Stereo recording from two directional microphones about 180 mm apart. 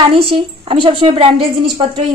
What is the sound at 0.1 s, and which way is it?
A woman's voice, 30° right (ahead or behind).